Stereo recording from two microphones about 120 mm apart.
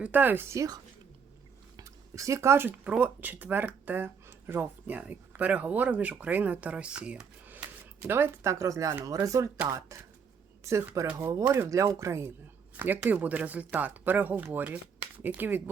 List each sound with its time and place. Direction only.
0.0 s speech: 15° right (ahead or behind)
1.7 s speech: 25° right (ahead or behind)
11.0 s speech: 10° right (ahead or behind)